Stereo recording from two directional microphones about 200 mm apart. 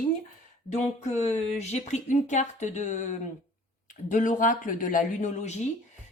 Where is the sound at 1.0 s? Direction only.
35° left (ahead or behind).